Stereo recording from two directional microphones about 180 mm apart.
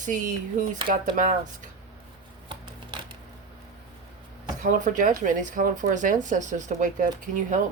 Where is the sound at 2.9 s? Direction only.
25° right (ahead or behind).